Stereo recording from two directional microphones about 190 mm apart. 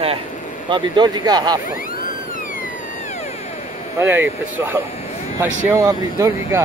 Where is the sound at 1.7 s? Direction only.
45° left (ahead or behind).